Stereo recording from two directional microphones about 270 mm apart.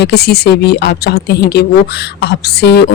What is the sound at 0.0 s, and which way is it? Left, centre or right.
Speech, left.